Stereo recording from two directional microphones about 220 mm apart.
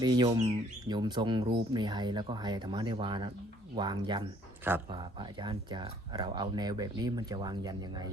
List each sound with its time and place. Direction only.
0.0 s speech: 20° right (ahead or behind)